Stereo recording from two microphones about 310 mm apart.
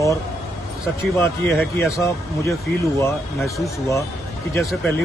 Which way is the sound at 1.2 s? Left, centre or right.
Centre.